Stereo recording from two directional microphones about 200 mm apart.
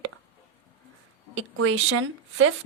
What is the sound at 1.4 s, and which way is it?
Speech, 90° right.